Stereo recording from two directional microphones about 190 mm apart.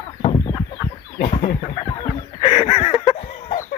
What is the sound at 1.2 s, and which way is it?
Chicken, 30° left (ahead or behind).